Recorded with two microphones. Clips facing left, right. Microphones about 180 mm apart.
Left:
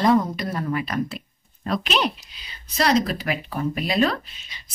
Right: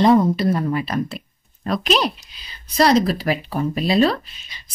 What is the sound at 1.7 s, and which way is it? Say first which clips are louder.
Speech: right 4 dB; 40° right (ahead or behind).